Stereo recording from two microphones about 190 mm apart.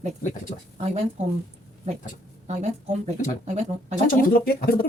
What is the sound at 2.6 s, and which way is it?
A woman's voice, 35° right (ahead or behind).